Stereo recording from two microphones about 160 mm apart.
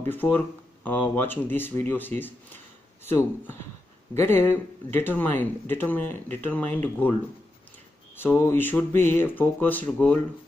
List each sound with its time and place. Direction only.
0.1 s speech: 10° left (ahead or behind)
8.2 s speech: 15° left (ahead or behind)